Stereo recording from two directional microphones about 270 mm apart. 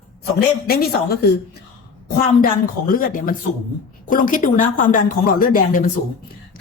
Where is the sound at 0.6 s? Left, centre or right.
Left.